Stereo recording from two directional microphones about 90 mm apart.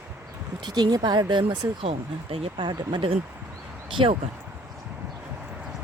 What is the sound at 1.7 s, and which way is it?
Speech, 90° right.